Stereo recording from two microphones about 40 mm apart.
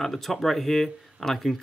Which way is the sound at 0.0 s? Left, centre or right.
Centre.